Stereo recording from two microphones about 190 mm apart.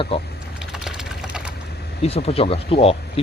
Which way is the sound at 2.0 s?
35° left (ahead or behind).